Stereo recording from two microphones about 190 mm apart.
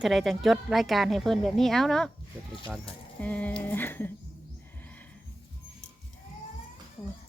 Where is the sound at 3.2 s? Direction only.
5° left (ahead or behind).